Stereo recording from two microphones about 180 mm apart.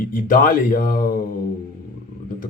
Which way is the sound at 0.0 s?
50° left (ahead or behind).